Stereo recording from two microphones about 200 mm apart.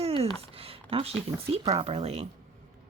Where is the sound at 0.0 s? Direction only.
30° right (ahead or behind).